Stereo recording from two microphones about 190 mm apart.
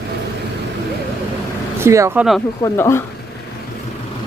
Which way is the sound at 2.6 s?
15° left (ahead or behind).